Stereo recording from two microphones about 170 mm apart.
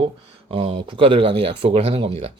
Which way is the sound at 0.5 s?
35° right (ahead or behind).